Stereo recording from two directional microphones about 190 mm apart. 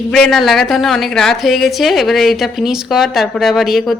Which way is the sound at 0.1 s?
Centre (ahead or behind).